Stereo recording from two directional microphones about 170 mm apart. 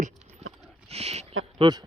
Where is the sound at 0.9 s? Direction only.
40° right (ahead or behind).